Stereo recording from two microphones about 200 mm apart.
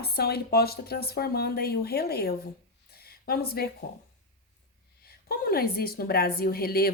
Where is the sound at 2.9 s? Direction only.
50° left (ahead or behind).